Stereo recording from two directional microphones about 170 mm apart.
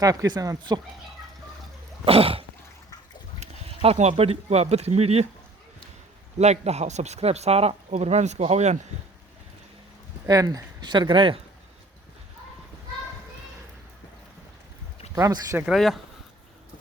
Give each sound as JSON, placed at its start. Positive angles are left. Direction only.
{"t": 0.0, "sound": "speech", "side_deg": -20}
{"t": 2.0, "sound": "speech", "side_deg": -35}
{"t": 3.4, "sound": "speech", "side_deg": -40}
{"t": 6.4, "sound": "speech", "side_deg": -40}
{"t": 10.2, "sound": "speech", "side_deg": -20}
{"t": 15.1, "sound": "speech", "side_deg": -20}
{"t": 15.6, "sound": "speech", "side_deg": 0}